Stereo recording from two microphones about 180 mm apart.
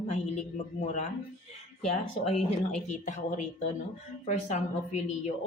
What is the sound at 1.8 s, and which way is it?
Speech, 35° left (ahead or behind).